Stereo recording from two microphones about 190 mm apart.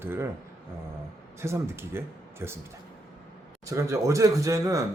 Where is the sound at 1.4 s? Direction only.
15° right (ahead or behind).